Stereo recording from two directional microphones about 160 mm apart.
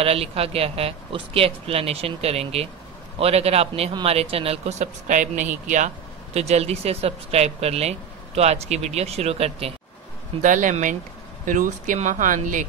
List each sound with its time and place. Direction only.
0.0 s speech: 40° right (ahead or behind)
10.4 s speech: 50° right (ahead or behind)